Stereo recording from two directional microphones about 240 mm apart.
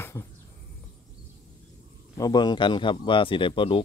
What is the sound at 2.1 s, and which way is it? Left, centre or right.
Speech, centre.